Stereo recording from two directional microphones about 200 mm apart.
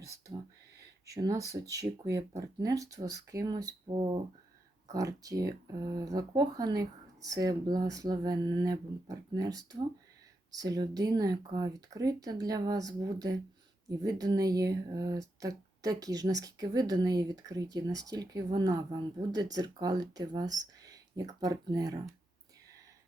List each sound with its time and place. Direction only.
1.0 s speech: 15° right (ahead or behind)